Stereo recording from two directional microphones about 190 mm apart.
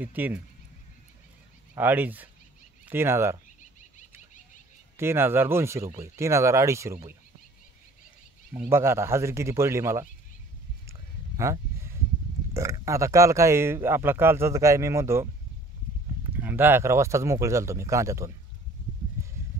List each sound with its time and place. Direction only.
0.0 s speech: 10° right (ahead or behind)
1.8 s speech: 10° right (ahead or behind)
4.9 s speech: 10° right (ahead or behind)
8.5 s speech: 15° right (ahead or behind)
10.9 s a sound: 15° right (ahead or behind)
12.5 s speech: 15° right (ahead or behind)
16.3 s speech: 10° right (ahead or behind)